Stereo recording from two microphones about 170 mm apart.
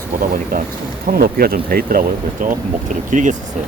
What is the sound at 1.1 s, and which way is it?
Speech, 60° right (ahead or behind).